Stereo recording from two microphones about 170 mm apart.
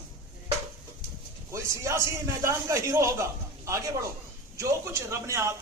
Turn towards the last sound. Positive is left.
turn(degrees=-15)  # may be behind; listen again after turning